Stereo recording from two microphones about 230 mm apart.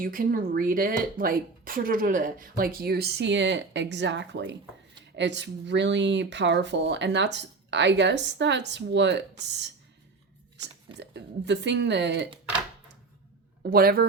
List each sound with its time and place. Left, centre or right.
0.0 s speech: right
10.9 s speech: right
13.6 s speech: right